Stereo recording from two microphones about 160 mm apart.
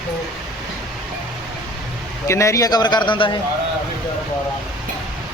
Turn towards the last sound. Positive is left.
turn(degrees=30)  # may be behind; listen again after turning